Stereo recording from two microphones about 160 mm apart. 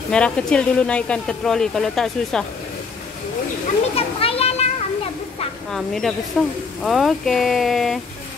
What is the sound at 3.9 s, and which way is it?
Children playing, 35° left (ahead or behind).